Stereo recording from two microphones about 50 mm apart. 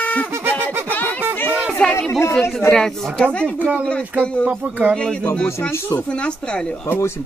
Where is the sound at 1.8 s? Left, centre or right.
Left.